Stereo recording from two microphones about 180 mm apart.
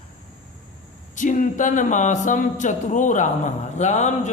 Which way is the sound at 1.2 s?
45° left (ahead or behind).